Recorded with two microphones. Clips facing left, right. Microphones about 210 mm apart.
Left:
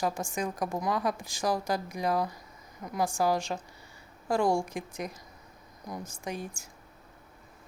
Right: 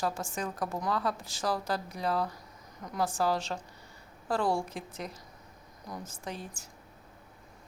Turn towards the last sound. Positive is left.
turn(degrees=10)  # may be behind; listen again after turning